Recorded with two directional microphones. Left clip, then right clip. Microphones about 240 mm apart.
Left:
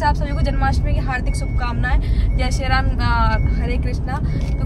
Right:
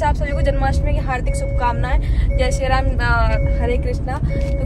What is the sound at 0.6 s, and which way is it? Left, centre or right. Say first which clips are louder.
Speech: right 1 dB; centre.